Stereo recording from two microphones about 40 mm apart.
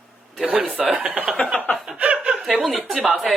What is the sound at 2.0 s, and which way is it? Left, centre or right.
Chuckle, right.